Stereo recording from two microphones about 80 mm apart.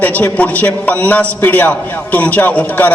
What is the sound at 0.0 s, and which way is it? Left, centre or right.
A man's voice, left.